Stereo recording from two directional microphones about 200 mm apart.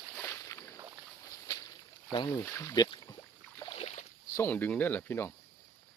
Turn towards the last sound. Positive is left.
turn(degrees=10)  # may be behind; listen again after turning